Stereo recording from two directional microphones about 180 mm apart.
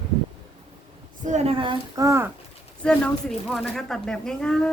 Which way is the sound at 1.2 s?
40° right (ahead or behind).